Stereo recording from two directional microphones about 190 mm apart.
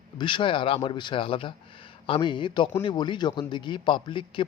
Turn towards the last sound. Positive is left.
turn(degrees=25)  # may be behind; listen again after turning